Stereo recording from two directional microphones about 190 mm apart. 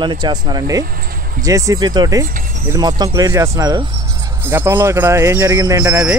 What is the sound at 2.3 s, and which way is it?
Speech, 45° right (ahead or behind).